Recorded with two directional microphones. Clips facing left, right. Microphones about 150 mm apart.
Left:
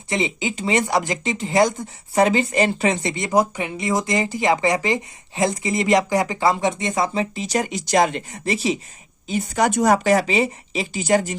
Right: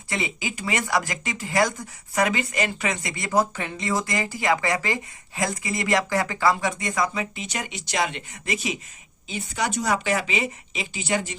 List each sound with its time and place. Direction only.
0.1 s speech: 20° left (ahead or behind)
9.2 s speech: 45° left (ahead or behind)